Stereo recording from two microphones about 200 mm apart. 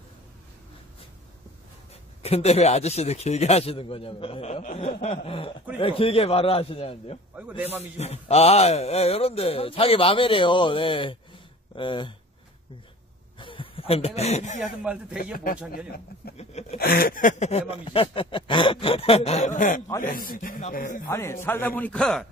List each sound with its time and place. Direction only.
2.2 s speech: 30° left (ahead or behind)
13.4 s speech: 25° left (ahead or behind)
14.6 s a man's voice: 5° right (ahead or behind)
15.3 s speech: 45° left (ahead or behind)
21.1 s speech: 15° left (ahead or behind)